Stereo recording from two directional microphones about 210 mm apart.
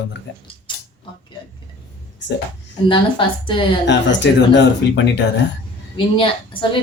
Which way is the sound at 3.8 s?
55° left (ahead or behind).